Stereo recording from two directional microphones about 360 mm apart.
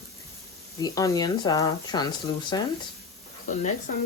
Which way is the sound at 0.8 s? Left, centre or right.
Centre.